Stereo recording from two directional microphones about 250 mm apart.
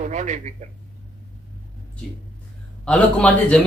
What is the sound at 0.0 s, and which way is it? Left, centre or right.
Speech, right.